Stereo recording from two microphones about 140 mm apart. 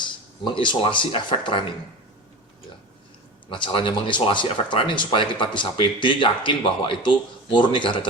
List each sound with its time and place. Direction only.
0.0 s speech: 35° left (ahead or behind)
3.5 s speech: 35° left (ahead or behind)